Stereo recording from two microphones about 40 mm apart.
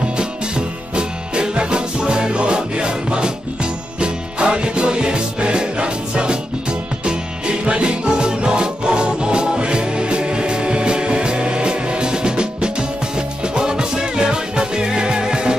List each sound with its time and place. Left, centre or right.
0.2 s music: right